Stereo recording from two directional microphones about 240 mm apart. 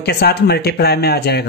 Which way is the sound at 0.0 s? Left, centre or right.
Left.